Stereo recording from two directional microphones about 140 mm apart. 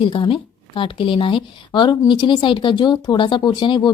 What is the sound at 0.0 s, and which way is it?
Speech, 35° left (ahead or behind).